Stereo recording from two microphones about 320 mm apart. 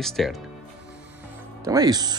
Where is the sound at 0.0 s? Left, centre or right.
Centre.